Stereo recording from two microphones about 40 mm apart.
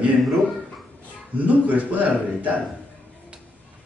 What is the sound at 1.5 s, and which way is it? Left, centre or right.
Speech, right.